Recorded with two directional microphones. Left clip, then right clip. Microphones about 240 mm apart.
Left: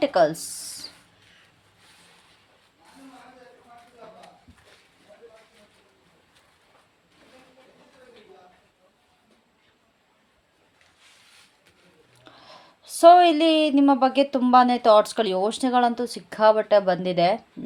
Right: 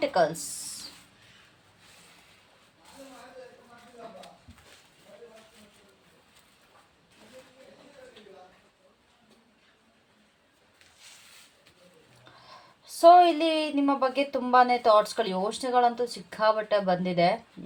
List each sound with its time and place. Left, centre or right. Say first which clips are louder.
0.0 s speech: left 5 dB; left
12.5 s speech: left 3 dB; left